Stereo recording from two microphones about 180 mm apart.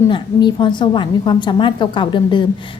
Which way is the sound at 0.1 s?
25° left (ahead or behind).